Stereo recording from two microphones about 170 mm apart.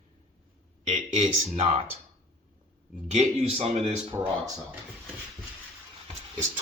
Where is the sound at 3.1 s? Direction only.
40° right (ahead or behind).